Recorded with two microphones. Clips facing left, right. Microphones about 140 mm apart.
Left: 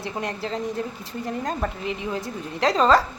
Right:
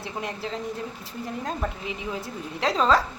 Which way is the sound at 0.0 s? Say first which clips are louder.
Left 3 dB; centre (ahead or behind).